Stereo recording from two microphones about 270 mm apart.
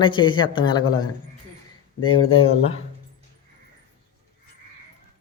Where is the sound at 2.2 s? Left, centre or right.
Left.